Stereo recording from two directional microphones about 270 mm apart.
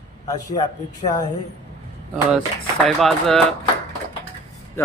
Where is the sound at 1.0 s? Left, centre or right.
Left.